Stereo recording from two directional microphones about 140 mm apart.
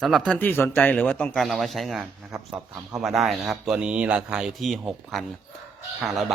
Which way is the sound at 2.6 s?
20° right (ahead or behind).